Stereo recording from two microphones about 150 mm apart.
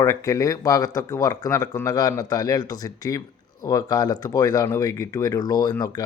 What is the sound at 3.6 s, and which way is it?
Speech, 25° left (ahead or behind).